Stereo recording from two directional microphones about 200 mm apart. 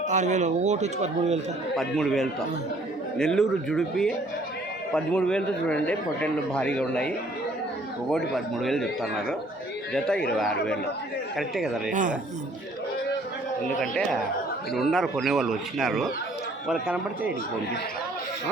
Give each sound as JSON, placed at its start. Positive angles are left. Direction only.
{"t": 0.1, "sound": "speech", "side_deg": -35}
{"t": 1.7, "sound": "a man's voice", "side_deg": 0}
{"t": 8.6, "sound": "a man's voice", "side_deg": 0}
{"t": 11.9, "sound": "speech", "side_deg": -40}
{"t": 13.7, "sound": "a man's voice", "side_deg": 5}